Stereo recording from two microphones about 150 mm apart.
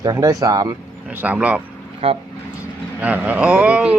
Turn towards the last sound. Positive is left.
turn(degrees=-10)  # may be behind; listen again after turning